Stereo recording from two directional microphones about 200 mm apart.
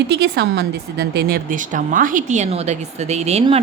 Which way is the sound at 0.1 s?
55° right (ahead or behind).